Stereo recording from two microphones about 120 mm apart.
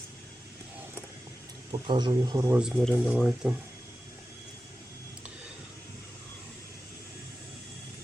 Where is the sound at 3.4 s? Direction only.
15° right (ahead or behind).